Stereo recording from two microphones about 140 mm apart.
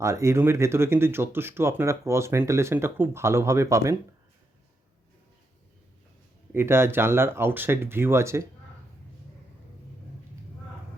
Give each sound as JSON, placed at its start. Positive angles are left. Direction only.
{"t": 0.0, "sound": "speech", "side_deg": -20}
{"t": 6.5, "sound": "speech", "side_deg": -15}